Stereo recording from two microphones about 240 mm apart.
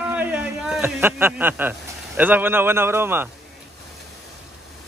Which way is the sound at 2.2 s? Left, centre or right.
Centre.